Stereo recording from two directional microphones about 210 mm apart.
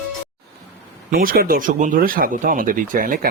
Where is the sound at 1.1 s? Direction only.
45° right (ahead or behind).